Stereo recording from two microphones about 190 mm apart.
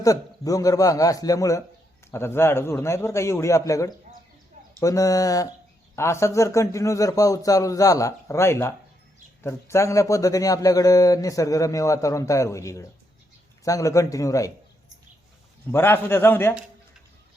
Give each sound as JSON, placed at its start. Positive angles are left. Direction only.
{"t": 0.0, "sound": "speech", "side_deg": 20}
{"t": 15.7, "sound": "speech", "side_deg": 10}